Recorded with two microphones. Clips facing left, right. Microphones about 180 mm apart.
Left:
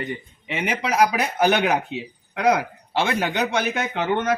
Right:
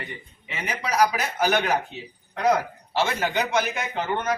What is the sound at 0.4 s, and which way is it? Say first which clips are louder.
Speech: left 5 dB; 65° left (ahead or behind).